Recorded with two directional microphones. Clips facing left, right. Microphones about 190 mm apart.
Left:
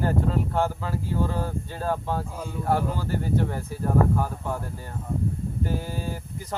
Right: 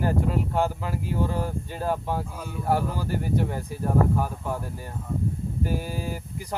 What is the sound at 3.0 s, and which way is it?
Speech, 15° right (ahead or behind).